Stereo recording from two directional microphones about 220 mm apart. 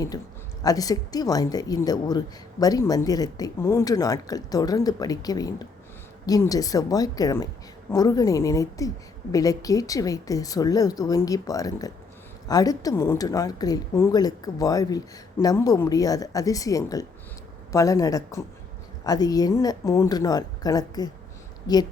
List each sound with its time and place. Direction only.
0.6 s a woman's voice: 15° left (ahead or behind)